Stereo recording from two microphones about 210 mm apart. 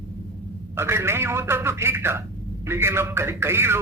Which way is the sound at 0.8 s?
10° right (ahead or behind).